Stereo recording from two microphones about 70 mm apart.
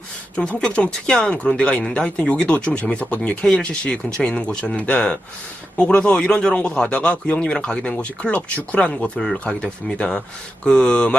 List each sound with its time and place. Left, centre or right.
0.3 s speech: centre